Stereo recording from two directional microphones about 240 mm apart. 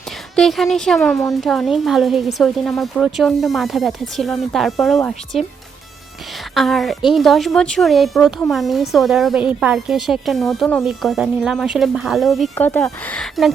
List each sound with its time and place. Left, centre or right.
0.3 s a woman's voice: centre
6.5 s a woman's voice: centre